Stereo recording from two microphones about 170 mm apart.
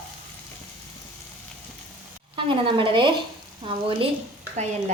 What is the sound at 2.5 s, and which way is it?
Speech, 30° right (ahead or behind).